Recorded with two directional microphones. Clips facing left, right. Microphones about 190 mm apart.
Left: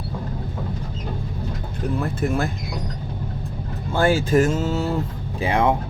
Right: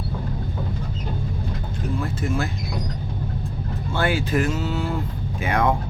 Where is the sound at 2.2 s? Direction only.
60° left (ahead or behind).